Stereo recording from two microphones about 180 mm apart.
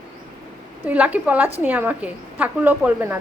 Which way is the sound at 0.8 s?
10° right (ahead or behind).